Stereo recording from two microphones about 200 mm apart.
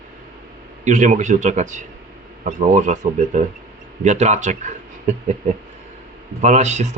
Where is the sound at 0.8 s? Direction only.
40° right (ahead or behind).